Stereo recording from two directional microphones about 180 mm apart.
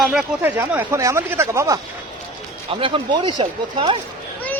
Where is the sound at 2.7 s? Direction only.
30° right (ahead or behind).